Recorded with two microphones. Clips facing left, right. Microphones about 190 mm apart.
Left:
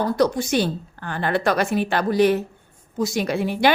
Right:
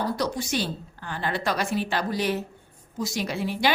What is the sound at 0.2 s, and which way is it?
A woman's voice, 55° left (ahead or behind).